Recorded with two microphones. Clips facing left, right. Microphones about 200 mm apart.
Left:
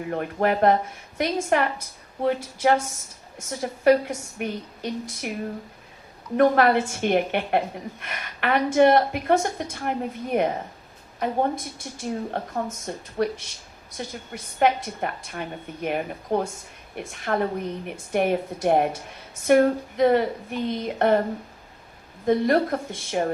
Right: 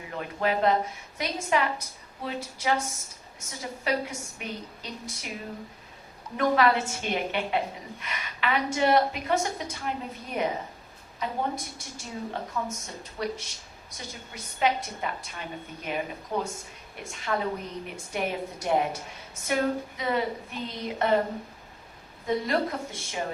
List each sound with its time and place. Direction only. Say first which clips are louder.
0.0 s a woman's voice: left 6 dB; 55° left (ahead or behind)
6.3 s a woman's voice: left 5 dB; 55° left (ahead or behind)
14.6 s a woman's voice: left 5 dB; 55° left (ahead or behind)
22.3 s a woman's voice: left 7 dB; 55° left (ahead or behind)